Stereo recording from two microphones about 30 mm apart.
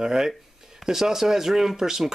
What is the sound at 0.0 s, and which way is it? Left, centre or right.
Speech, centre.